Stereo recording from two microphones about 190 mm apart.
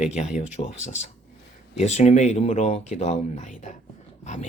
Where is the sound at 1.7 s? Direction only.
35° left (ahead or behind).